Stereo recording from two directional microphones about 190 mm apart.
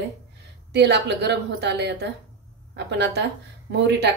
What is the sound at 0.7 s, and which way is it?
A woman's voice, 65° right (ahead or behind).